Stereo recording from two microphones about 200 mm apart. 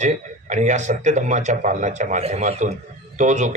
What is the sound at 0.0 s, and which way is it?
A man's voice, 35° right (ahead or behind).